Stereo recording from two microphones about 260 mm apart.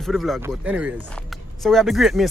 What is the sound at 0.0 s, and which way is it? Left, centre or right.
Speech, centre.